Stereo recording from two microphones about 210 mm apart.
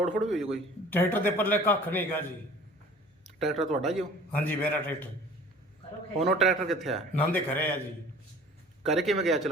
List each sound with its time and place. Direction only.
0.0 s a man's voice: centre (ahead or behind)
3.2 s a sound: centre (ahead or behind)
3.7 s a man's voice: centre (ahead or behind)
6.1 s a man's voice: centre (ahead or behind)
8.8 s a man's voice: centre (ahead or behind)